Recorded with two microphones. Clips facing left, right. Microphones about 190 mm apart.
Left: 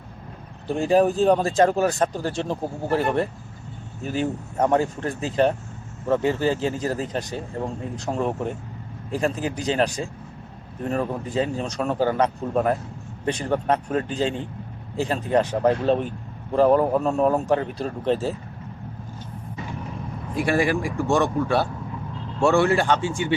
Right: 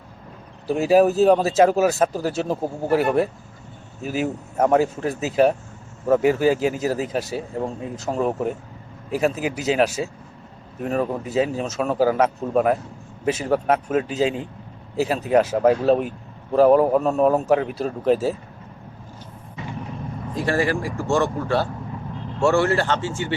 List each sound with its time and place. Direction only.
0.7 s a man's voice: 5° right (ahead or behind)
20.3 s speech: 15° left (ahead or behind)